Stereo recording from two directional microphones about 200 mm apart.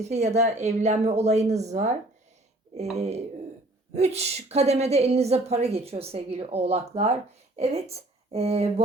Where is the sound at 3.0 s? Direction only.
35° right (ahead or behind).